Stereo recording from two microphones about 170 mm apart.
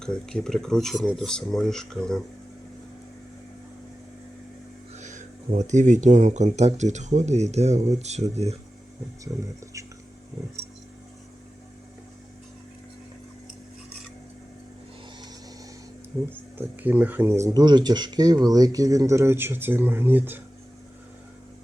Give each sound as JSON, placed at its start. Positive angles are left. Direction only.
{"t": 0.0, "sound": "speech", "side_deg": 5}
{"t": 4.9, "sound": "speech", "side_deg": -45}
{"t": 9.3, "sound": "speech", "side_deg": -15}
{"t": 16.6, "sound": "speech", "side_deg": -10}